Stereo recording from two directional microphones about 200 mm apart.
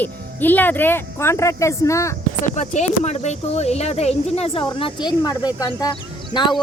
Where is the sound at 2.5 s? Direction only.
35° left (ahead or behind).